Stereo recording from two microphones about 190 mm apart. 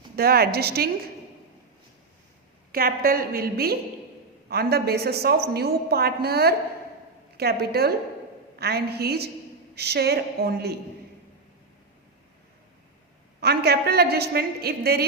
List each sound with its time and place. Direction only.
0.2 s a woman's voice: 55° right (ahead or behind)
2.7 s a woman's voice: 50° right (ahead or behind)
13.4 s a woman's voice: 55° right (ahead or behind)